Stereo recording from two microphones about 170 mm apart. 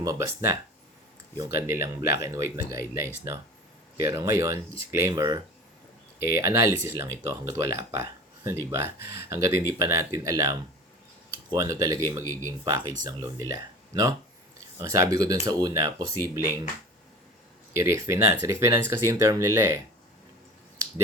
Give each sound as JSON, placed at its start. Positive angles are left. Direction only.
{"t": 0.0, "sound": "speech", "side_deg": -20}
{"t": 17.7, "sound": "speech", "side_deg": -15}